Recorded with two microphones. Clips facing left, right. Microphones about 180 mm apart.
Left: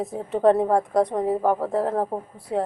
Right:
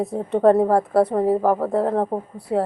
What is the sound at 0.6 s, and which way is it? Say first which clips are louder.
A woman's voice: right 3 dB; 35° right (ahead or behind).